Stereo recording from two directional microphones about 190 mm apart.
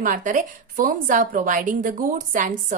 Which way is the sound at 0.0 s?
45° right (ahead or behind).